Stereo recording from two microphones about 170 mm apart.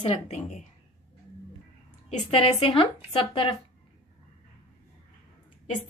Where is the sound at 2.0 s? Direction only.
35° left (ahead or behind).